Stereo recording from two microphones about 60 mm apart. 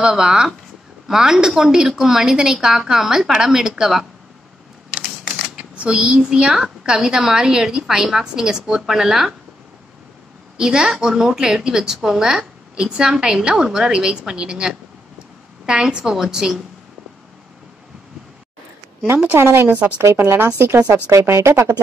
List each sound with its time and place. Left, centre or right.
0.0 s speech: centre
5.2 s speech: centre
10.6 s speech: centre
19.3 s a woman's voice: right